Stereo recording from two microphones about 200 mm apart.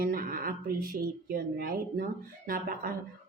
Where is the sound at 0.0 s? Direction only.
45° right (ahead or behind).